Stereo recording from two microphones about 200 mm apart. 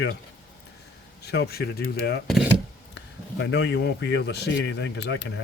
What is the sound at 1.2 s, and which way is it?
Speech, 55° left (ahead or behind).